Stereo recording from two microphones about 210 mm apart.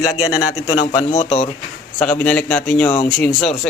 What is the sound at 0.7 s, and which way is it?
Speech, 25° left (ahead or behind).